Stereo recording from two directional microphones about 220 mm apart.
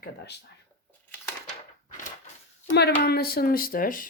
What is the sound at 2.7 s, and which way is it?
Speech, 45° left (ahead or behind).